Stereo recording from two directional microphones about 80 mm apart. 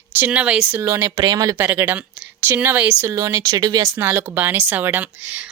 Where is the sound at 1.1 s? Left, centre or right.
Right.